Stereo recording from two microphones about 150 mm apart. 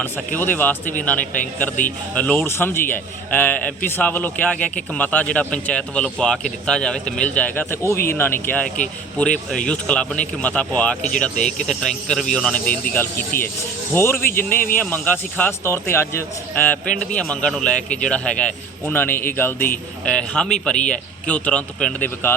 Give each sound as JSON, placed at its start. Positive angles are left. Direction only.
{"t": 0.0, "sound": "a man's voice", "side_deg": 10}
{"t": 13.3, "sound": "speech", "side_deg": 75}
{"t": 13.9, "sound": "a man's voice", "side_deg": 15}